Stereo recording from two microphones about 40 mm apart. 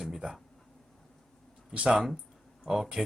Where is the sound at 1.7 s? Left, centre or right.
Right.